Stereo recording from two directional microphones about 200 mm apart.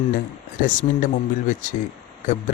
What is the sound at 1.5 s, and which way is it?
Speech, 40° left (ahead or behind).